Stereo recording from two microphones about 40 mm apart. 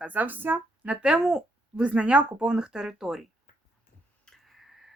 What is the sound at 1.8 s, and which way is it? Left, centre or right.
Speech, right.